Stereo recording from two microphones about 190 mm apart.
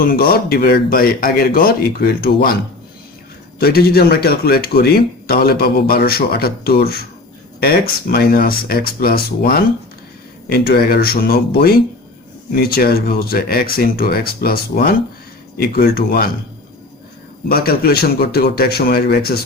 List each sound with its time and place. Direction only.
0.0 s speech: 50° left (ahead or behind)
3.5 s speech: 55° left (ahead or behind)
17.5 s speech: 55° left (ahead or behind)